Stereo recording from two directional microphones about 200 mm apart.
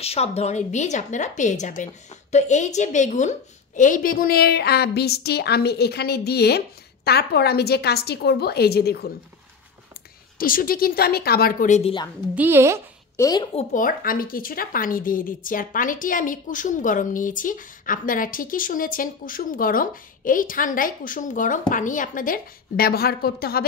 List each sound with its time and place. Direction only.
0.0 s a woman's voice: 30° left (ahead or behind); by 9.1 s 50° left (ahead or behind)
10.3 s speech: 45° left (ahead or behind)
12.4 s speech: 10° right (ahead or behind)
13.1 s a woman's voice: 15° left (ahead or behind)
13.6 s speech: 45° left (ahead or behind)